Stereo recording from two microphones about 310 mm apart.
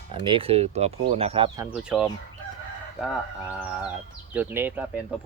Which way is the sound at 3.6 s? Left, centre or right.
Centre.